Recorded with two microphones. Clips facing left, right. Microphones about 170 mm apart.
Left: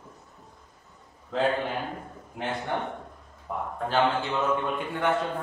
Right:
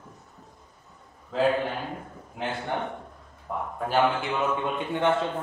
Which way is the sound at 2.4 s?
Centre (ahead or behind).